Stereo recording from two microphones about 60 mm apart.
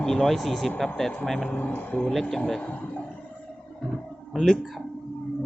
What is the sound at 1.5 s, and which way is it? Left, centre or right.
Speech, left.